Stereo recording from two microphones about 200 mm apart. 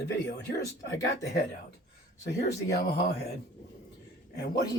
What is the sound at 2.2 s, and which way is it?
Speech, 55° left (ahead or behind).